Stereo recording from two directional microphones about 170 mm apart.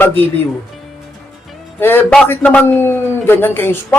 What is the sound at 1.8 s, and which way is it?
A man's voice, 10° left (ahead or behind).